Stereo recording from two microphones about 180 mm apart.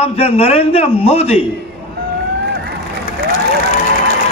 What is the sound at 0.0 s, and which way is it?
A man's voice, 35° left (ahead or behind).